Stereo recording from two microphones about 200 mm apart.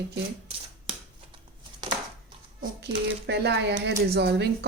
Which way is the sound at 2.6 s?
55° right (ahead or behind).